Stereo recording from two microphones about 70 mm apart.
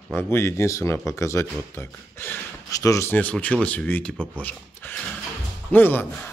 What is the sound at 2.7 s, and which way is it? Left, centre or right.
Speech, left.